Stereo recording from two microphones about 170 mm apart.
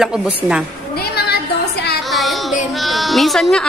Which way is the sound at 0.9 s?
70° left (ahead or behind).